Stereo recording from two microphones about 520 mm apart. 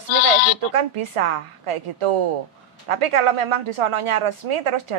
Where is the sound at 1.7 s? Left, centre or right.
Right.